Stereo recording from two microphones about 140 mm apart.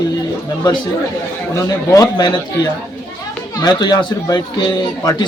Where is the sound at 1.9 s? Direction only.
30° left (ahead or behind).